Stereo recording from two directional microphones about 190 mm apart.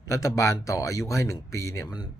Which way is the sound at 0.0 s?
15° left (ahead or behind).